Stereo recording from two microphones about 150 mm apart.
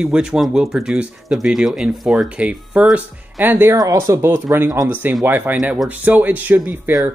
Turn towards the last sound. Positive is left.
turn(degrees=-10)  # may be behind; listen again after turning